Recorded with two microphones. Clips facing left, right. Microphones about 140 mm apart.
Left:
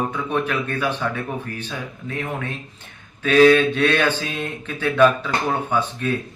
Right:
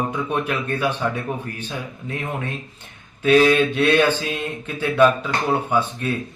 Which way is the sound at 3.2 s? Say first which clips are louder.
Left 2 dB; 10° right (ahead or behind).